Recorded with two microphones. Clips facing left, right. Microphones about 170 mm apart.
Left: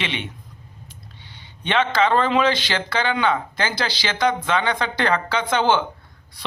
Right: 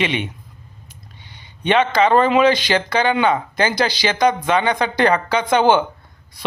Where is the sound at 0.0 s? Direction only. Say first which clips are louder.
Right 7 dB; 15° right (ahead or behind).